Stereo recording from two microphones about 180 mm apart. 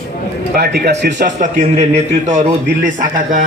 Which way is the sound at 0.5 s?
65° right (ahead or behind).